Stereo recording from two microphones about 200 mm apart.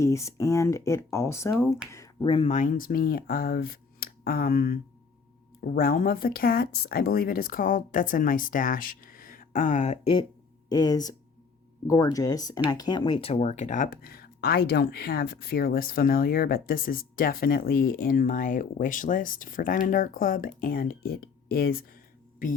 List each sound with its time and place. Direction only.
0.0 s speech: 15° left (ahead or behind)
2.2 s speech: 30° left (ahead or behind)
10.7 s speech: 20° left (ahead or behind); by 22.6 s 45° left (ahead or behind)